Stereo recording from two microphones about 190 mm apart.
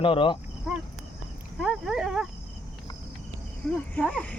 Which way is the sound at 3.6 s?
Centre (ahead or behind).